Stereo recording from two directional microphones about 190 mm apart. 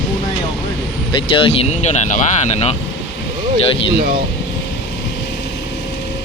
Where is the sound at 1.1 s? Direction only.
25° left (ahead or behind).